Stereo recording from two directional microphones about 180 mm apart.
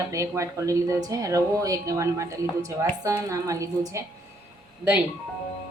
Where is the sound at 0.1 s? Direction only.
15° right (ahead or behind).